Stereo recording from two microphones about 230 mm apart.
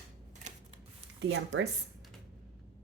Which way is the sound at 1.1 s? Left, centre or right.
Right.